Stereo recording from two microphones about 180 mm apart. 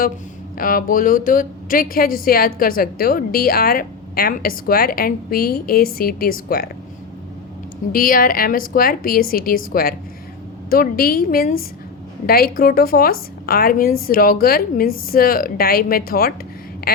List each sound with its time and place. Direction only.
0.5 s a woman's voice: 50° left (ahead or behind)
7.9 s a woman's voice: 50° left (ahead or behind)
10.7 s a woman's voice: 55° left (ahead or behind)
16.8 s quack: 60° left (ahead or behind)